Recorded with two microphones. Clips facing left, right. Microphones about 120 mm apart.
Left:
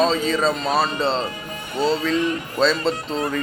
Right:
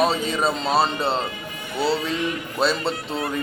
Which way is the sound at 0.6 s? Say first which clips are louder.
Even; 25° right (ahead or behind).